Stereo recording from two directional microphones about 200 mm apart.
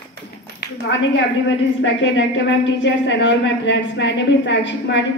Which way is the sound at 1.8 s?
65° left (ahead or behind).